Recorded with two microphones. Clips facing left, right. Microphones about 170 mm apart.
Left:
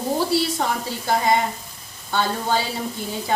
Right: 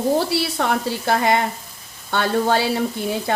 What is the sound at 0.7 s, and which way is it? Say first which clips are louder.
Speech: right 3 dB; 70° right (ahead or behind).